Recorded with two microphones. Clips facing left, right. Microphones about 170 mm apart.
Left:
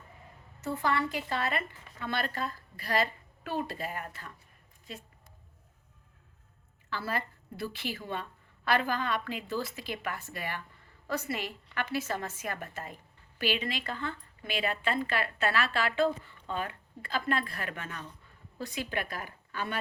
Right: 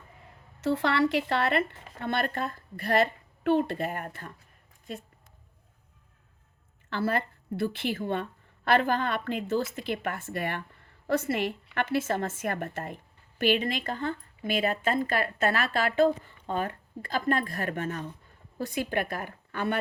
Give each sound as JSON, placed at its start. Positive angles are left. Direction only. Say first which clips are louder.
{"t": 0.6, "sound": "a woman's voice", "louder": "right 6 dB", "side_deg": -75}
{"t": 6.9, "sound": "a woman's voice", "louder": "right 6 dB", "side_deg": -55}